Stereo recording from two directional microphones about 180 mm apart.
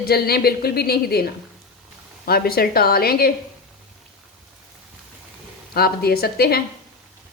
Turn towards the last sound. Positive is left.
turn(degrees=60)  # may be behind; listen again after turning